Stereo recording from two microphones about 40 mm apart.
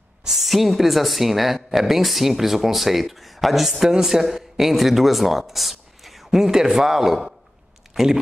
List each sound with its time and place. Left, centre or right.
0.3 s speech: centre
6.3 s speech: centre